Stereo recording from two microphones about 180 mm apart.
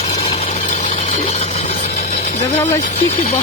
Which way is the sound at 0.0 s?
35° left (ahead or behind).